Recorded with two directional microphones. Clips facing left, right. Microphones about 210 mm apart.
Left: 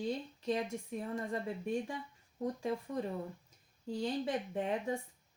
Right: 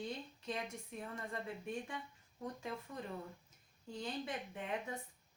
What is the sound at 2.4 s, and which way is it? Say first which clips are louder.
Speech: left 8 dB; 35° left (ahead or behind).